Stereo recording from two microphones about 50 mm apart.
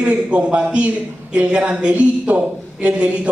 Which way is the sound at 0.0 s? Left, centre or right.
Right.